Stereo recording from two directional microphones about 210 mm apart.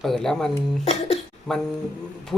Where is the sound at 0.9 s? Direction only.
30° left (ahead or behind).